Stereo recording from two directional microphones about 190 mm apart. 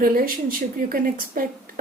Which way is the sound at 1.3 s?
50° right (ahead or behind).